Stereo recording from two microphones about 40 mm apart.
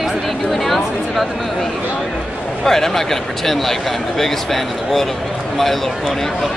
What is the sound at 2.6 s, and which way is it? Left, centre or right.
Speech, centre.